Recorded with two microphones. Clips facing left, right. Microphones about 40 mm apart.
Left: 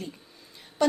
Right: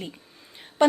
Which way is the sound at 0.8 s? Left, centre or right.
Right.